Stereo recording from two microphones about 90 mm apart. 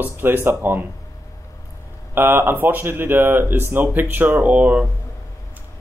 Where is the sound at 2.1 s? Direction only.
25° right (ahead or behind).